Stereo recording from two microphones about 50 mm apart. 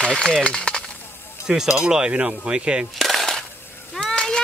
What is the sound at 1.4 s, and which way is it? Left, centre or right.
Speech, centre.